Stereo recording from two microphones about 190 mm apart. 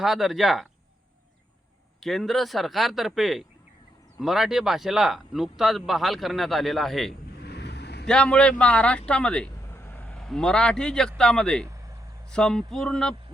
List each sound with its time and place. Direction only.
0.0 s speech: centre (ahead or behind)
2.0 s speech: centre (ahead or behind)
7.4 s a sound: 60° left (ahead or behind)
8.0 s speech: 5° left (ahead or behind)